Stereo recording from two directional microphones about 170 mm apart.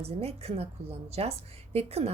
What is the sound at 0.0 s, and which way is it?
A woman's voice, 35° right (ahead or behind).